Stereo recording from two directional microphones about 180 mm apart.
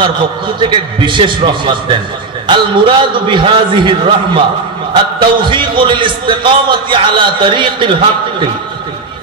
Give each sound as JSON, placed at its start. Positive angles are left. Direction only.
{"t": 0.6, "sound": "a man's voice", "side_deg": -25}